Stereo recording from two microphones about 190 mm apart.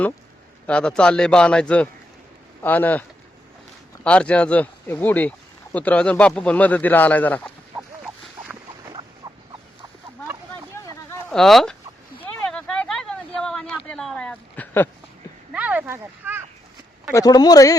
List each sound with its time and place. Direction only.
0.7 s a man's voice: 5° left (ahead or behind)
8.9 s rodents: 25° right (ahead or behind)
11.1 s a sound: 5° left (ahead or behind)
15.5 s speech: 5° right (ahead or behind)
17.2 s speech: 20° left (ahead or behind)